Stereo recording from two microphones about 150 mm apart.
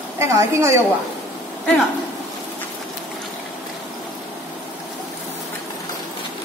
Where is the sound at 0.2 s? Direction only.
20° right (ahead or behind).